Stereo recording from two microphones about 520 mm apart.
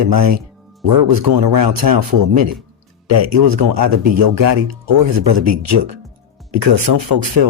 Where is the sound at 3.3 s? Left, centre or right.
Right.